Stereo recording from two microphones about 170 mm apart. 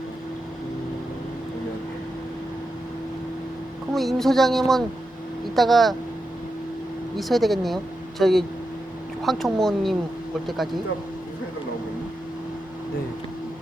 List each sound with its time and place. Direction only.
3.9 s speech: centre (ahead or behind)
7.2 s speech: centre (ahead or behind)